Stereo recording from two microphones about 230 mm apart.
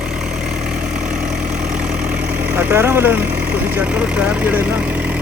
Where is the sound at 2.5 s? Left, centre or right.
Centre.